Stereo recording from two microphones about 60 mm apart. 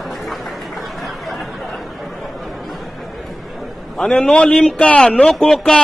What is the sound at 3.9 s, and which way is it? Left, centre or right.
Speech, centre.